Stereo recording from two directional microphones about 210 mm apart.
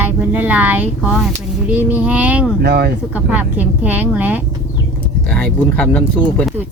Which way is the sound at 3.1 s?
5° right (ahead or behind).